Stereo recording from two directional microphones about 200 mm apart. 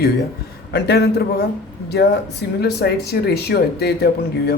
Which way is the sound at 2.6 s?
55° left (ahead or behind).